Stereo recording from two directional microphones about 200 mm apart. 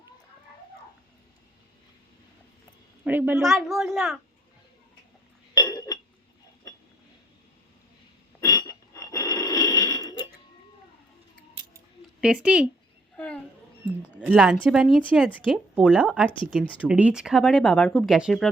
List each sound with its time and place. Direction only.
3.0 s a woman's voice: 10° right (ahead or behind)
3.5 s speech: centre (ahead or behind)
5.5 s chink: 15° left (ahead or behind)
8.4 s a sound: 15° left (ahead or behind)
12.2 s speech: 5° right (ahead or behind)
13.1 s a sound: 5° left (ahead or behind)
14.2 s speech: 5° right (ahead or behind)